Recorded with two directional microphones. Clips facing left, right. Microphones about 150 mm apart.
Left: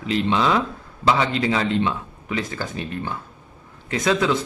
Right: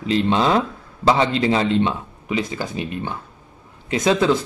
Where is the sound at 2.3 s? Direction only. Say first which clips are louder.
Right 3 dB; 15° right (ahead or behind).